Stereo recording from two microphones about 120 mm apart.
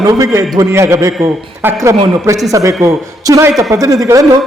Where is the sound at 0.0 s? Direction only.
30° right (ahead or behind).